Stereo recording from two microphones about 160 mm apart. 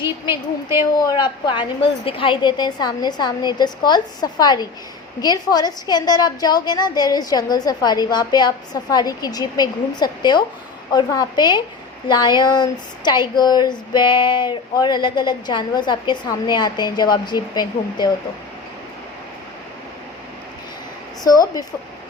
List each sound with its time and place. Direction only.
0.9 s speech: 25° left (ahead or behind)
21.2 s speech: 25° left (ahead or behind)